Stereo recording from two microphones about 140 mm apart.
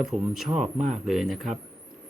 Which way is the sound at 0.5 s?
55° right (ahead or behind).